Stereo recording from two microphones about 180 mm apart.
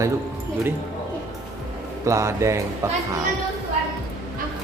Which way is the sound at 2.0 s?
15° right (ahead or behind).